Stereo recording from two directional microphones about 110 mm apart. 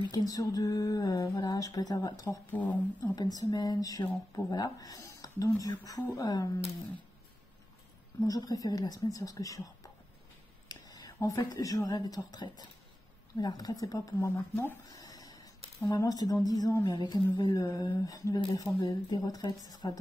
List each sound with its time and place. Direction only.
0.1 s speech: 35° left (ahead or behind)
2.5 s speech: 15° left (ahead or behind)
3.2 s speech: 35° left (ahead or behind)
8.3 s speech: 35° left (ahead or behind)
10.7 s speech: 35° left (ahead or behind)
14.1 s speech: 20° left (ahead or behind)
14.9 s a sound: 35° left (ahead or behind)
15.9 s speech: 30° left (ahead or behind)